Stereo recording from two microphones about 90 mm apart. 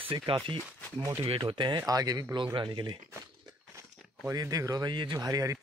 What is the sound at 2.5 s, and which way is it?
Speech, 60° right (ahead or behind).